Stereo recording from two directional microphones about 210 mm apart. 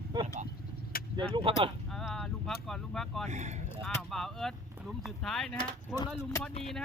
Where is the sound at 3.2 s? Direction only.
35° right (ahead or behind).